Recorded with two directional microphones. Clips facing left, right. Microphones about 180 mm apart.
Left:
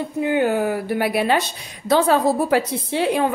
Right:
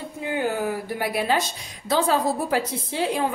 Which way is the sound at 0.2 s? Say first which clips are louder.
Left 6 dB; 65° left (ahead or behind).